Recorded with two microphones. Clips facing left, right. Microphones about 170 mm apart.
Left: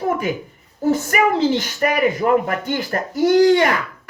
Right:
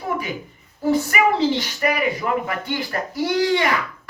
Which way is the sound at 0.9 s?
45° left (ahead or behind).